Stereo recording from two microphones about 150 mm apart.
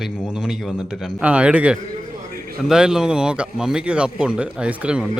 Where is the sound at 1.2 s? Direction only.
10° right (ahead or behind).